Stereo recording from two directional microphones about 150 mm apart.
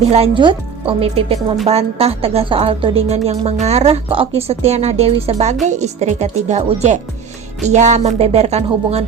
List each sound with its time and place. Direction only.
0.0 s a woman's voice: 40° right (ahead or behind)